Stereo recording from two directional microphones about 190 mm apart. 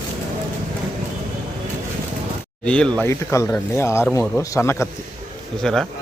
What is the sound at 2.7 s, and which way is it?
Speech, 5° left (ahead or behind).